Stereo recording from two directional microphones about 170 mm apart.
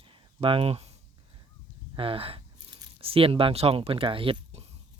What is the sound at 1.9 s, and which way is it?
Speech, 35° right (ahead or behind).